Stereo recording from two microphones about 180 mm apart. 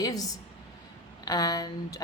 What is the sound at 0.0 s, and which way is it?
A woman's voice, 20° left (ahead or behind).